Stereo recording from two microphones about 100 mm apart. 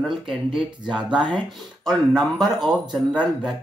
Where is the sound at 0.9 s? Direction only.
50° right (ahead or behind).